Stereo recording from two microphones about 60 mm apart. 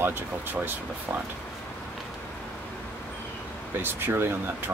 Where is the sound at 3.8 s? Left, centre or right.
Right.